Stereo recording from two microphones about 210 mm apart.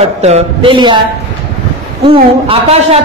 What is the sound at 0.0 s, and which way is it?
A woman's voice, 30° right (ahead or behind).